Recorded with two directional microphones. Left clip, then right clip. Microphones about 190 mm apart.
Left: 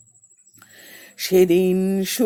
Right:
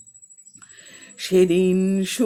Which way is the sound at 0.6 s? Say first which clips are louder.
Left 2 dB; 35° left (ahead or behind).